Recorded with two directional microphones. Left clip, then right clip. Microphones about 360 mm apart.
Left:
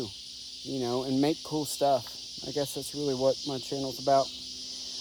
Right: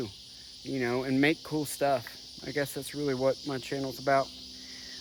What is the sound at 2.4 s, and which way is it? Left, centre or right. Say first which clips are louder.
Cricket: even; centre.